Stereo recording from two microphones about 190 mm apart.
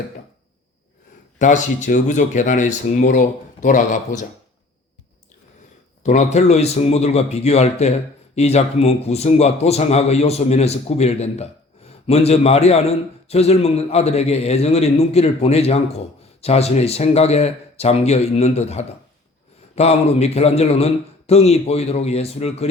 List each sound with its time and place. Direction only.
1.4 s a man's voice: 40° left (ahead or behind)
6.0 s a man's voice: 40° left (ahead or behind)